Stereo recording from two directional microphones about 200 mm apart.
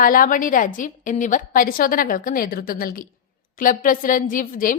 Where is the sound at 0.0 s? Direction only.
45° left (ahead or behind).